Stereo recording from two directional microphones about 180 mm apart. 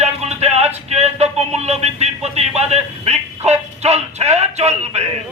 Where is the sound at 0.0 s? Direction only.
35° right (ahead or behind).